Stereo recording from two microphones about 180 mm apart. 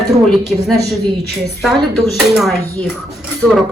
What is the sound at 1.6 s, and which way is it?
Speech, centre (ahead or behind).